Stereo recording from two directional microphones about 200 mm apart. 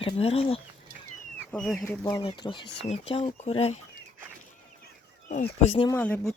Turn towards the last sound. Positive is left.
turn(degrees=5)  # may be behind; listen again after turning